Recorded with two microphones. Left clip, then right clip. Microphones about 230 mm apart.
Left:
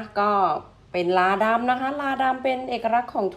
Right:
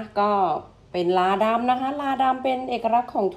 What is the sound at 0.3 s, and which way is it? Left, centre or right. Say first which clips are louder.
A woman's voice: left 1 dB; centre.